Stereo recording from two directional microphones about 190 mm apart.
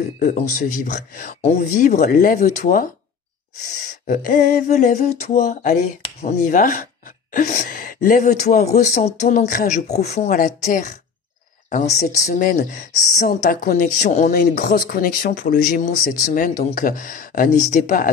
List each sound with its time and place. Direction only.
0.2 s speech: 45° left (ahead or behind)
4.1 s speech: 40° left (ahead or behind)